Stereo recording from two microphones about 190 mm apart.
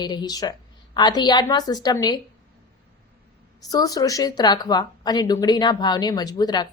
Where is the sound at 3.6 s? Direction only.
20° left (ahead or behind).